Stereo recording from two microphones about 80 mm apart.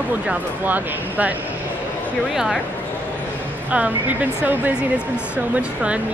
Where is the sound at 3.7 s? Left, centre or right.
Centre.